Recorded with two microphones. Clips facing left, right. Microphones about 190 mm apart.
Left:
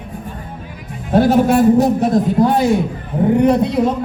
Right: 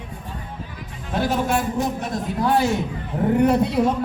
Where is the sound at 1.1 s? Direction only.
40° left (ahead or behind).